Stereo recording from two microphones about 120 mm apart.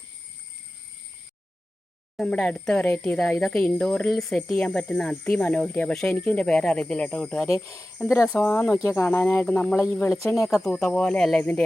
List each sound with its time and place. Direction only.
2.1 s speech: 10° left (ahead or behind)
7.5 s speech: 25° left (ahead or behind)
10.2 s speech: 25° left (ahead or behind)
10.5 s speech: 5° left (ahead or behind)